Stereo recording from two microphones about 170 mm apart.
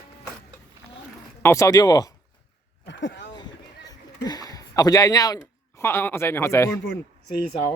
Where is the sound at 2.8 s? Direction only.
90° left.